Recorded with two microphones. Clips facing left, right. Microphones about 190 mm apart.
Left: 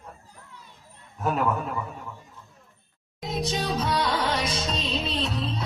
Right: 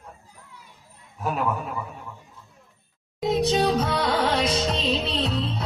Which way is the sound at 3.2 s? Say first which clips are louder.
Right 8 dB; 65° right (ahead or behind).